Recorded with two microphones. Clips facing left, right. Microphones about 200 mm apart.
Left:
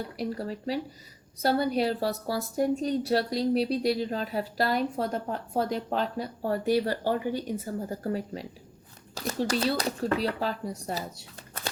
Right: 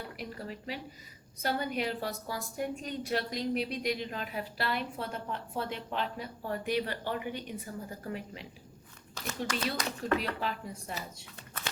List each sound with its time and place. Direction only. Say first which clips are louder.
0.2 s a woman's voice: left 9 dB; 35° left (ahead or behind)